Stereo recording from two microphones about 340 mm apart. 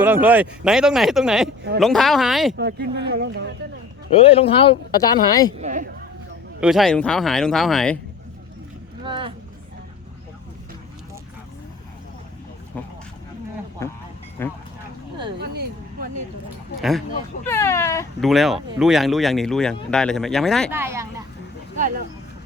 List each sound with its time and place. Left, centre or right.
0.0 s speech: centre
2.6 s speech: right
4.1 s speech: centre
5.5 s speech: right
6.6 s speech: centre
9.0 s a sound: centre
12.7 s speech: centre
13.8 s a sound: centre
14.4 s speech: centre
15.4 s a sound: right
17.4 s speech: centre
21.8 s a sound: right